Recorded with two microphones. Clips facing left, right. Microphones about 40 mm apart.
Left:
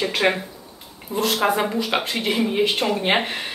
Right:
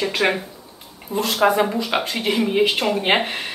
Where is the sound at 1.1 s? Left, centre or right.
Left.